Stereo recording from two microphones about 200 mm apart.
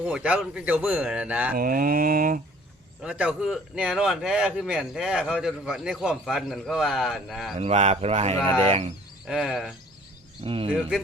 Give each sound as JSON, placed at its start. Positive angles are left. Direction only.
{"t": 0.0, "sound": "speech", "side_deg": -5}
{"t": 1.5, "sound": "mantra", "side_deg": -45}
{"t": 3.0, "sound": "speech", "side_deg": -5}
{"t": 7.6, "sound": "speech", "side_deg": -30}
{"t": 9.2, "sound": "speech", "side_deg": 0}
{"t": 10.4, "sound": "speech", "side_deg": -25}
{"t": 10.7, "sound": "speech", "side_deg": -5}